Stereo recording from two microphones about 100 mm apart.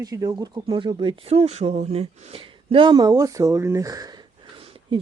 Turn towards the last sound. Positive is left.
turn(degrees=-65)  # may be behind; listen again after turning